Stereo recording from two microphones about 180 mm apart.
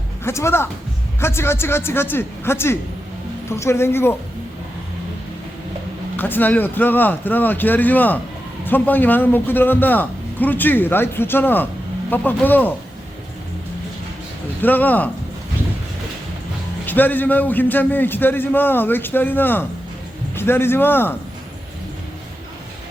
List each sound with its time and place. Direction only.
0.3 s a man's voice: 15° left (ahead or behind)
6.1 s a man's voice: 10° left (ahead or behind)
14.6 s a man's voice: 10° left (ahead or behind)
16.8 s a man's voice: 10° left (ahead or behind)